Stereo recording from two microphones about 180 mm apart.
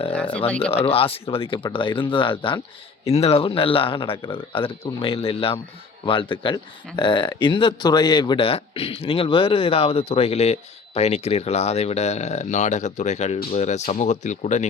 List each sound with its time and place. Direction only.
0.3 s speech: 5° left (ahead or behind)
0.6 s speech: 35° left (ahead or behind)